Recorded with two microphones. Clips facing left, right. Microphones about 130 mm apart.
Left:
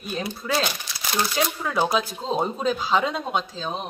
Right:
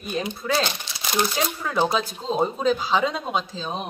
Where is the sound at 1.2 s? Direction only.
Centre (ahead or behind).